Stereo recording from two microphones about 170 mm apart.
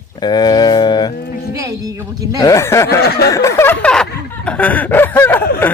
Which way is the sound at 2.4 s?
15° left (ahead or behind).